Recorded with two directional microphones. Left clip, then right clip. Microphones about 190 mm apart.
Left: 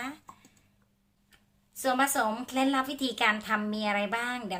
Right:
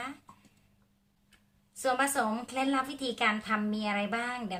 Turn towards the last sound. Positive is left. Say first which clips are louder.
# left 2 dB
turn(degrees=20)  # may be behind; listen again after turning